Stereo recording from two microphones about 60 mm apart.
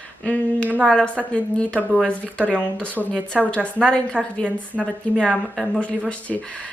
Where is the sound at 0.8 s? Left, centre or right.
Centre.